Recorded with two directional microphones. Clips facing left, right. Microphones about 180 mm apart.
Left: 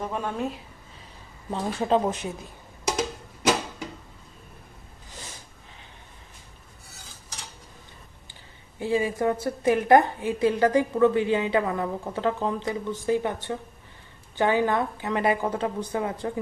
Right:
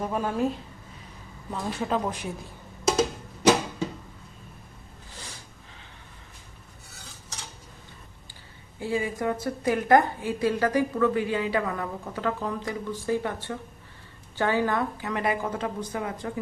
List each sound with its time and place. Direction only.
0.0 s speech: 5° right (ahead or behind)
1.5 s a woman's voice: 25° left (ahead or behind)
8.8 s a woman's voice: 25° left (ahead or behind)